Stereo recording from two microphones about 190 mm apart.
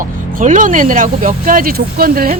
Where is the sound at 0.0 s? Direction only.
45° right (ahead or behind).